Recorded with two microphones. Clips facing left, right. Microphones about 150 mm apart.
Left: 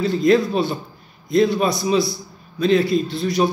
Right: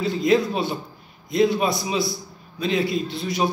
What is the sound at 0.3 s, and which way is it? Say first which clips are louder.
Speech: left 3 dB; 20° right (ahead or behind).